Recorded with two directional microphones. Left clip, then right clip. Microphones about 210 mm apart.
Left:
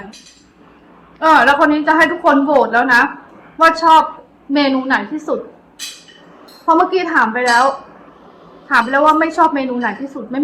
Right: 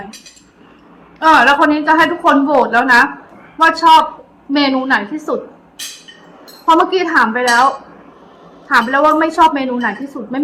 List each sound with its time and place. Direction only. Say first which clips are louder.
1.2 s a woman's voice: right 1 dB; 5° right (ahead or behind)
6.7 s a woman's voice: right 1 dB; 5° right (ahead or behind)
8.7 s a woman's voice: even; 5° right (ahead or behind)